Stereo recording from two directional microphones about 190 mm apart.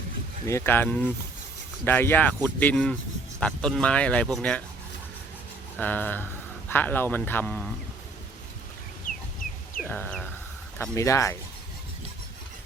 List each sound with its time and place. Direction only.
0.4 s speech: 15° left (ahead or behind)
5.7 s speech: 10° left (ahead or behind)
9.1 s chicken: 45° left (ahead or behind)
9.8 s a sound: 10° left (ahead or behind)
10.8 s speech: 15° left (ahead or behind)